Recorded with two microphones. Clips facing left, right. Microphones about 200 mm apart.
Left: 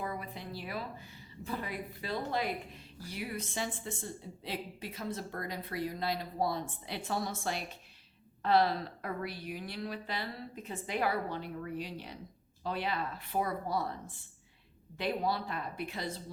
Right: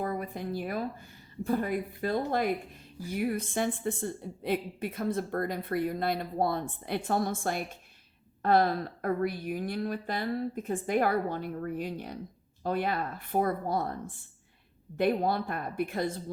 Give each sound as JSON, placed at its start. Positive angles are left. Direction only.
{"t": 0.0, "sound": "a woman's voice", "side_deg": -50}